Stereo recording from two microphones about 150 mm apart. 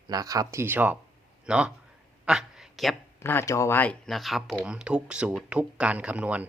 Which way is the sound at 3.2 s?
15° left (ahead or behind).